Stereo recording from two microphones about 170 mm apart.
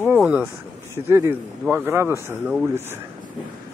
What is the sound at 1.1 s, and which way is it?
Speech, 15° right (ahead or behind).